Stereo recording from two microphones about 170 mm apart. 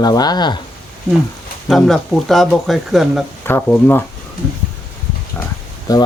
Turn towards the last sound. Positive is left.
turn(degrees=20)  # may be behind; listen again after turning